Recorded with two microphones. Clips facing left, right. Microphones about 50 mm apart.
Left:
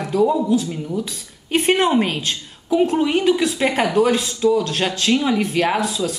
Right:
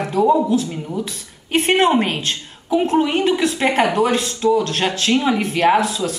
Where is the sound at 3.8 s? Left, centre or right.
Right.